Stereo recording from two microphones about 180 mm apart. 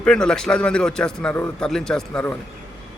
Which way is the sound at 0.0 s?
5° left (ahead or behind).